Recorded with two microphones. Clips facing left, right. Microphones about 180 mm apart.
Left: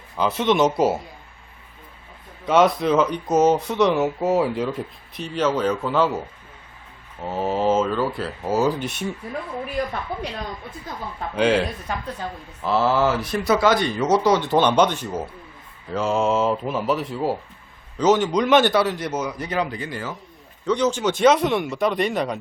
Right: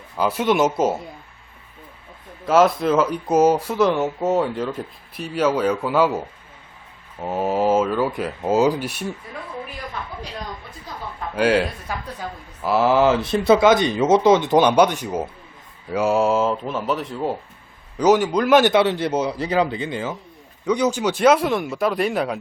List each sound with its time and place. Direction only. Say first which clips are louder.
0.2 s speech: even; 10° right (ahead or behind)
2.4 s speech: right 1 dB; 5° right (ahead or behind)
7.3 s speech: right 2 dB; 10° right (ahead or behind)
11.3 s speech: right 1 dB; 5° right (ahead or behind)
17.9 s speech: right 2 dB; 10° right (ahead or behind)
18.7 s speech: right 3 dB; 25° right (ahead or behind); by 22.4 s 5° right (ahead or behind)